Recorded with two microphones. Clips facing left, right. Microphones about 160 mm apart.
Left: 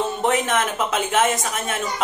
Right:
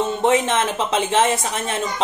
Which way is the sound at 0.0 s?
25° right (ahead or behind).